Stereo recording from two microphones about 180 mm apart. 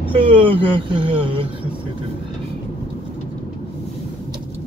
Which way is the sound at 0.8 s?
30° right (ahead or behind).